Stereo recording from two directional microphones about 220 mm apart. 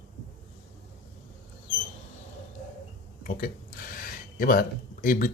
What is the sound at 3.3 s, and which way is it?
Speech, 40° left (ahead or behind).